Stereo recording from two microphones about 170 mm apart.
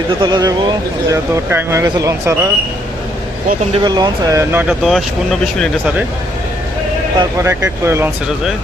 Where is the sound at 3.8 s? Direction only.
25° right (ahead or behind).